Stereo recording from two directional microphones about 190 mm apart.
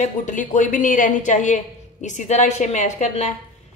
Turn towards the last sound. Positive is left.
turn(degrees=40)  # may be behind; listen again after turning